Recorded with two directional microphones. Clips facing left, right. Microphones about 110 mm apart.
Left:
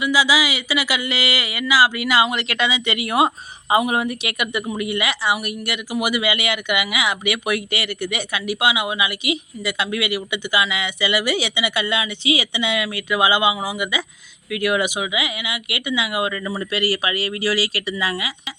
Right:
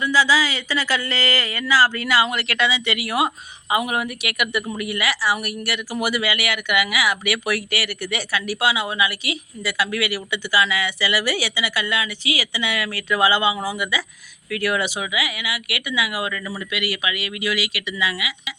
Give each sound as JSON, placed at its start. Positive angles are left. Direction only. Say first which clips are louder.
{"t": 0.0, "sound": "speech", "louder": "even", "side_deg": 15}
{"t": 16.6, "sound": "speech", "louder": "left 5 dB", "side_deg": 35}